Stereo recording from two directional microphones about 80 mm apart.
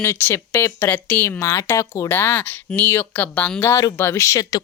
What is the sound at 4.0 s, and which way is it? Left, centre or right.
Speech, left.